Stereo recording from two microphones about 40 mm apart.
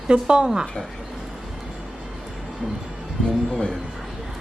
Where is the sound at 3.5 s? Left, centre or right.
Left.